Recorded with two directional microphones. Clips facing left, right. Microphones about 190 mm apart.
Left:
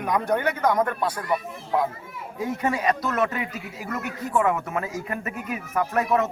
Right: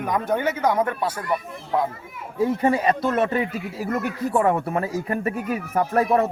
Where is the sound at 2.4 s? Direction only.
30° right (ahead or behind).